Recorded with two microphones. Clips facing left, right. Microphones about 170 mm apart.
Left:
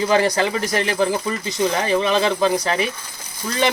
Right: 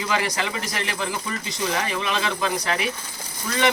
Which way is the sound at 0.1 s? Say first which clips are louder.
Left 6 dB; 30° left (ahead or behind).